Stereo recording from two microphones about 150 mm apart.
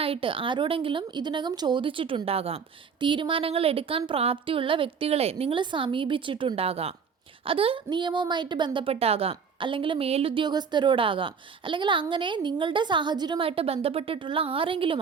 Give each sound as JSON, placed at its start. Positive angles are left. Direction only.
{"t": 0.0, "sound": "a woman's voice", "side_deg": -35}